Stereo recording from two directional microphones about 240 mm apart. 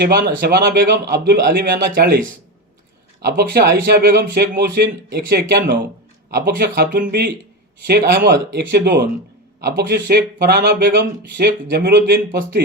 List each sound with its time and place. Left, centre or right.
0.0 s speech: right